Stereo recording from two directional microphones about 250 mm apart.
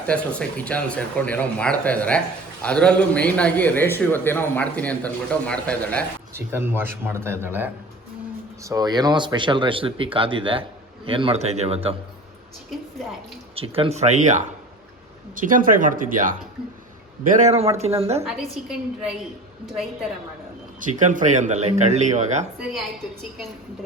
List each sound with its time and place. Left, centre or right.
0.1 s speech: centre
6.3 s a man's voice: centre
13.6 s speech: right
20.8 s speech: right